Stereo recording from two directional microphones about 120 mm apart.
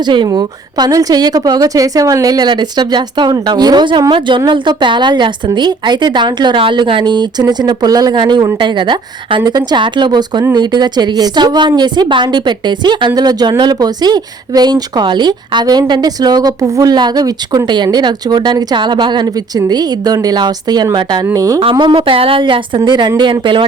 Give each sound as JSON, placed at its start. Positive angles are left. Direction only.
{"t": 0.0, "sound": "a woman's voice", "side_deg": -40}
{"t": 21.6, "sound": "speech", "side_deg": -45}